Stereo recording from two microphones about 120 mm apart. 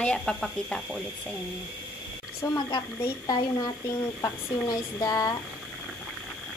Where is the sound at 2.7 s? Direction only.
35° left (ahead or behind).